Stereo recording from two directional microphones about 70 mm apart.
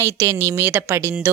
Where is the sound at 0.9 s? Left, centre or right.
Right.